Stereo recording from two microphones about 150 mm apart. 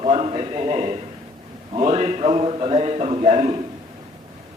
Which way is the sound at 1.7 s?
40° right (ahead or behind).